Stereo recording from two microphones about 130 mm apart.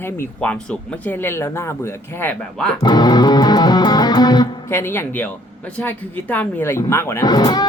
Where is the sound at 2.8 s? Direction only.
30° left (ahead or behind).